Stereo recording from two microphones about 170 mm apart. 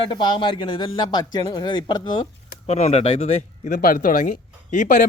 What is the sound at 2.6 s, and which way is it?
Speech, 40° left (ahead or behind).